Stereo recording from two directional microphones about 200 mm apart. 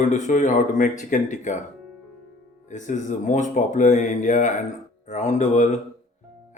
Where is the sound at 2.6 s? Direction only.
40° left (ahead or behind).